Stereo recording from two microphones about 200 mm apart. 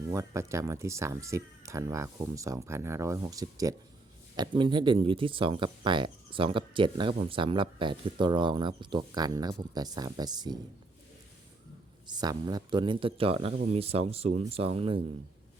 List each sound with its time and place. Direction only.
0.1 s speech: 15° right (ahead or behind)
12.0 s speech: 20° right (ahead or behind)